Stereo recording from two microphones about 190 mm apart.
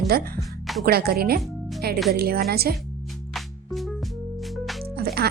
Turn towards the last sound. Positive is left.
turn(degrees=-55)  # may be behind; listen again after turning